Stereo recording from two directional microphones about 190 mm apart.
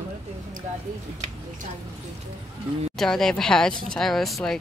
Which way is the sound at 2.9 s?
Centre (ahead or behind).